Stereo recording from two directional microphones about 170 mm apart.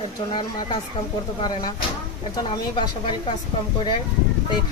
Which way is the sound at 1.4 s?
25° left (ahead or behind).